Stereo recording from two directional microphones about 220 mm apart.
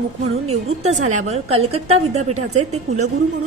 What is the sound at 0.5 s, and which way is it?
A woman's voice, 30° right (ahead or behind).